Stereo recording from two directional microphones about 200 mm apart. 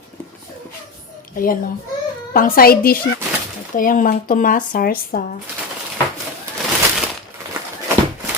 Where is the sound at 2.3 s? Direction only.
45° left (ahead or behind).